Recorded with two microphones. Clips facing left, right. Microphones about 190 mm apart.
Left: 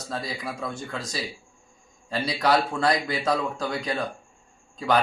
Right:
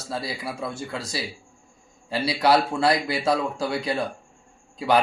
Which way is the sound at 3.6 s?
35° right (ahead or behind).